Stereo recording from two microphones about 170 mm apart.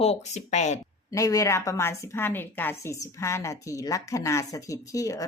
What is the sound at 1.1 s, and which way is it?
A woman's voice, 20° left (ahead or behind).